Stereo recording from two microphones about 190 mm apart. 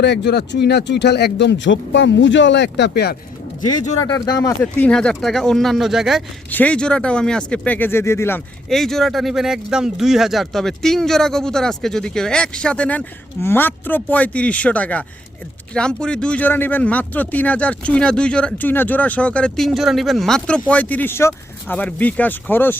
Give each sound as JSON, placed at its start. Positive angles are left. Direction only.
{"t": 0.0, "sound": "speech", "side_deg": 65}
{"t": 4.0, "sound": "speech", "side_deg": 20}
{"t": 8.7, "sound": "speech", "side_deg": 0}